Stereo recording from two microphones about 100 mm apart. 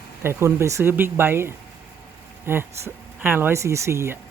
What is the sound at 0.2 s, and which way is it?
Speech, 25° right (ahead or behind).